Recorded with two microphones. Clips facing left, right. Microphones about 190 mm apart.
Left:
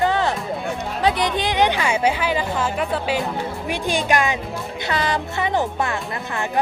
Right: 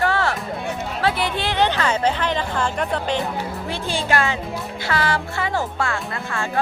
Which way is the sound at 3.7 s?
15° left (ahead or behind).